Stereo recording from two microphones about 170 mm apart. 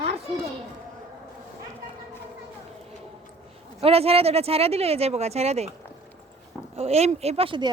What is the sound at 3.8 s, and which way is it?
Speech, 35° right (ahead or behind).